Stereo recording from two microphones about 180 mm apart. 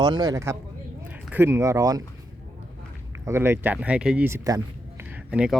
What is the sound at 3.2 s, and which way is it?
Speech, 15° right (ahead or behind).